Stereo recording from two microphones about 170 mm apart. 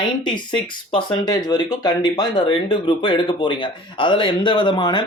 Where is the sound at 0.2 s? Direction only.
25° left (ahead or behind).